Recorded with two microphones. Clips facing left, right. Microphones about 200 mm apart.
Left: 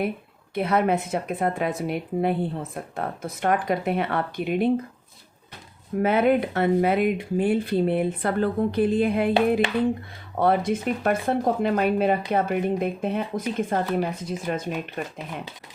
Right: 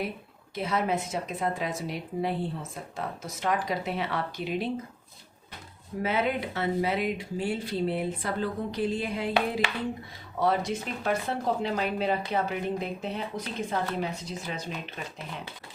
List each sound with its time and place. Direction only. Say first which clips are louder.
0.5 s a woman's voice: left 6 dB; 60° left (ahead or behind)
6.0 s a woman's voice: left 8 dB; 55° left (ahead or behind)
10.4 s speech: left 5 dB; 55° left (ahead or behind)